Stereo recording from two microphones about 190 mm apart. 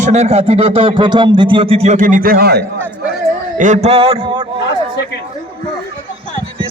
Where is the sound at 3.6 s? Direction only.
40° right (ahead or behind).